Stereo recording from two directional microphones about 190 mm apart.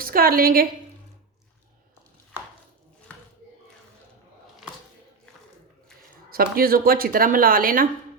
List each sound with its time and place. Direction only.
0.0 s speech: 50° right (ahead or behind)
6.3 s speech: 50° right (ahead or behind)